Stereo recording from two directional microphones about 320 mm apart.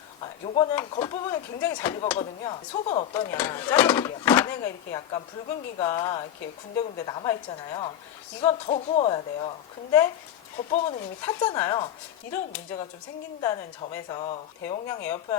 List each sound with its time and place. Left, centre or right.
0.2 s speech: centre